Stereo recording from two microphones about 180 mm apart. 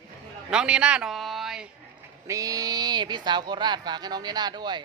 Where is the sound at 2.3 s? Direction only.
20° right (ahead or behind).